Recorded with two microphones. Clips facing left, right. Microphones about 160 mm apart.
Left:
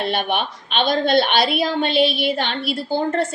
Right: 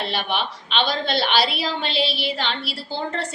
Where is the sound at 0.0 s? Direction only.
55° left (ahead or behind).